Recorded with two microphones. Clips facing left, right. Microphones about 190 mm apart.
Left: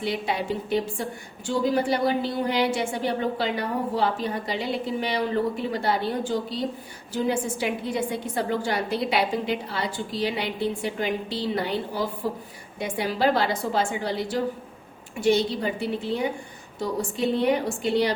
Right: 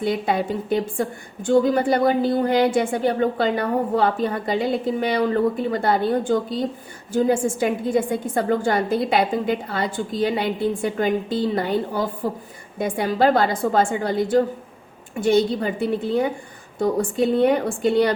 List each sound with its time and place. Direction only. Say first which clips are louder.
0.0 s a woman's voice: right 5 dB; 50° right (ahead or behind)